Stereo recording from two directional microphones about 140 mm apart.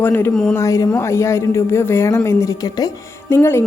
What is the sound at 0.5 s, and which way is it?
Speech, 20° left (ahead or behind).